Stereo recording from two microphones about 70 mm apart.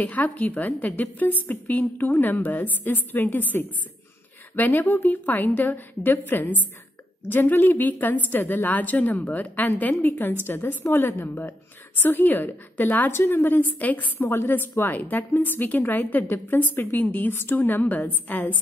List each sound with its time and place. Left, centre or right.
0.0 s a woman's voice: left